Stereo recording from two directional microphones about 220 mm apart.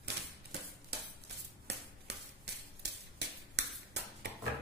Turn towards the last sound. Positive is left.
turn(degrees=-50)  # may be behind; listen again after turning